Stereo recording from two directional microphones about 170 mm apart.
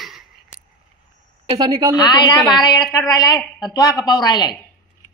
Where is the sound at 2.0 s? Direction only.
25° left (ahead or behind).